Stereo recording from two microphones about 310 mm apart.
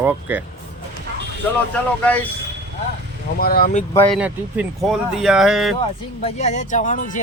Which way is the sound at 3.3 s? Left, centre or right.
Left.